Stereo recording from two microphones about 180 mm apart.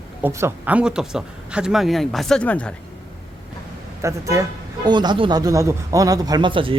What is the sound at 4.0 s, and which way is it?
A man's voice, 15° right (ahead or behind).